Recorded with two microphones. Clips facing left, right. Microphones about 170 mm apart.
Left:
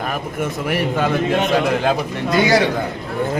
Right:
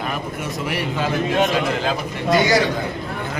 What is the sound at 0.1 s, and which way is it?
A man's voice, 50° left (ahead or behind).